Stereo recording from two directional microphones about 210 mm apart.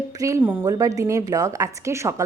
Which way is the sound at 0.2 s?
15° right (ahead or behind).